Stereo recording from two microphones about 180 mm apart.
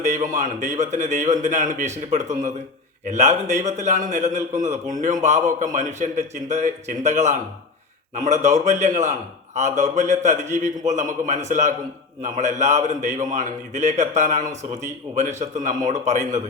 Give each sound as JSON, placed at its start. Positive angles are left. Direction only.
{"t": 0.1, "sound": "a man's voice", "side_deg": -45}
{"t": 3.1, "sound": "a man's voice", "side_deg": -40}